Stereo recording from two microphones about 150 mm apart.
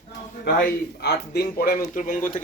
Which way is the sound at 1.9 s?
60° left (ahead or behind).